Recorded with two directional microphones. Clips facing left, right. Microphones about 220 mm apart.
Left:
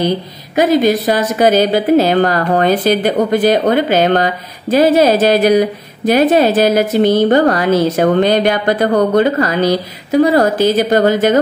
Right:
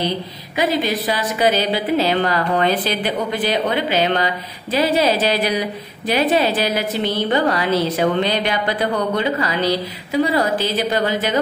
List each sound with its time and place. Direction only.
0.6 s speech: 45° left (ahead or behind)